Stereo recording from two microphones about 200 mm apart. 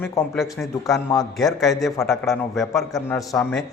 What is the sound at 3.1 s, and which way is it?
Speech, 15° left (ahead or behind).